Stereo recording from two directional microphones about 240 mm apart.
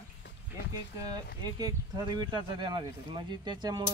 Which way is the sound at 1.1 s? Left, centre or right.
Centre.